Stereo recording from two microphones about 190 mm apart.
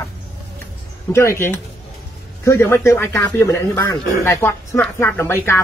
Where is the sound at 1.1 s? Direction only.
15° left (ahead or behind).